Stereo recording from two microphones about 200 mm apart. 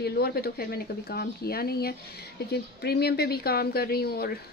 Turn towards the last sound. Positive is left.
turn(degrees=50)  # may be behind; listen again after turning